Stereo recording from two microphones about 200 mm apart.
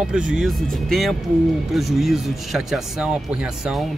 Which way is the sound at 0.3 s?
Centre (ahead or behind).